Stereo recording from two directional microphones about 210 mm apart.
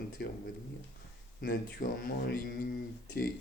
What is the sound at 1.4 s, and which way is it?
Speech, 45° left (ahead or behind).